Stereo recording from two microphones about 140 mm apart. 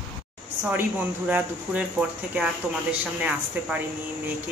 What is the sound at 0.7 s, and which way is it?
Speech, 15° right (ahead or behind).